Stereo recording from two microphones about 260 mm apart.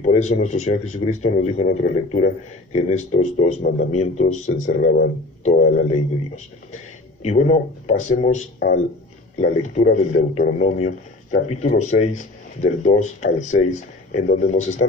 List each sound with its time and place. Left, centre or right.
0.0 s speech: left